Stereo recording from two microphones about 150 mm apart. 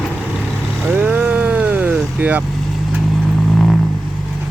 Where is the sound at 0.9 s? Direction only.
10° right (ahead or behind).